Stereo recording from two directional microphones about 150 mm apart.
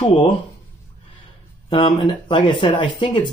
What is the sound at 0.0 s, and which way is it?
Speech, 35° left (ahead or behind).